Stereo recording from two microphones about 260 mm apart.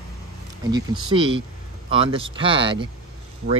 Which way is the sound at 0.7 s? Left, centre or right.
Centre.